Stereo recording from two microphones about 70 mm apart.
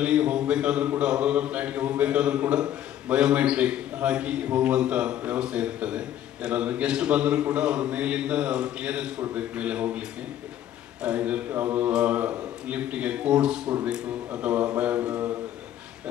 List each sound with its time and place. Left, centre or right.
0.0 s a man's voice: centre